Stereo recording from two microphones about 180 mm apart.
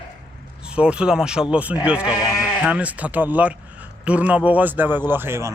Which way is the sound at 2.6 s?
5° right (ahead or behind).